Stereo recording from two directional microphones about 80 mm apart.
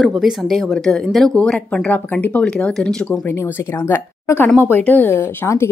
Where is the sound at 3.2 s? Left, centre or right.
Left.